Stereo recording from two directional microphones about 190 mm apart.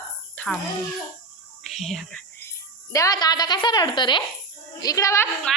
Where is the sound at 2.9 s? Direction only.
20° left (ahead or behind).